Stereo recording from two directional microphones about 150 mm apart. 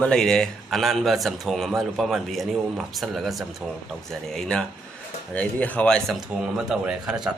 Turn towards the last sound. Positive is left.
turn(degrees=-5)  # may be behind; listen again after turning